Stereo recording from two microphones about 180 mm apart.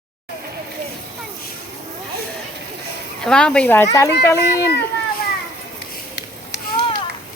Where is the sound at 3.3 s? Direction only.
5° left (ahead or behind).